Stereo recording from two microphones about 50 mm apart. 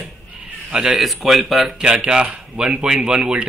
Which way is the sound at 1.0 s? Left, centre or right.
Centre.